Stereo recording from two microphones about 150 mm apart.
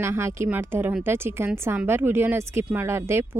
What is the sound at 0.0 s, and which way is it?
Speech, 20° right (ahead or behind).